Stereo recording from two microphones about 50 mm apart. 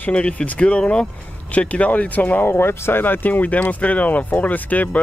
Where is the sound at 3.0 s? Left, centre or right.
Left.